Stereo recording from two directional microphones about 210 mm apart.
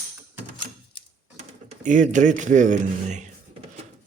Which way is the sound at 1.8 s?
35° right (ahead or behind).